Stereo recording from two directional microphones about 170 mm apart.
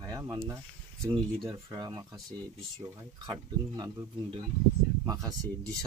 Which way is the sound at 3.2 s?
25° right (ahead or behind).